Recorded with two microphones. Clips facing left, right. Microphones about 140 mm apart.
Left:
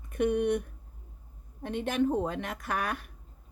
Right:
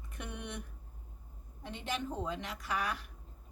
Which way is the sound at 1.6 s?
55° left (ahead or behind).